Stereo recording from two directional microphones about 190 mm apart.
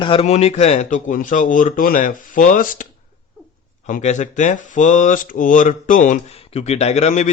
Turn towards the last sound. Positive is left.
turn(degrees=35)  # may be behind; listen again after turning